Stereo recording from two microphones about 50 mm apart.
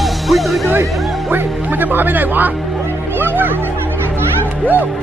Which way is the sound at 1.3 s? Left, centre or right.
Right.